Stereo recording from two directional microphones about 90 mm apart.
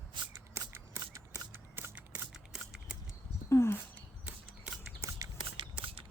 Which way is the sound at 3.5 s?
30° left (ahead or behind).